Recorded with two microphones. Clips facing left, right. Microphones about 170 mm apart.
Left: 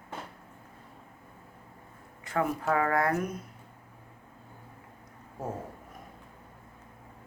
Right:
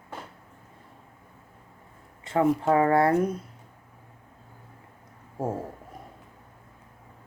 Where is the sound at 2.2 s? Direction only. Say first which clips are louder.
Right 7 dB; 25° right (ahead or behind).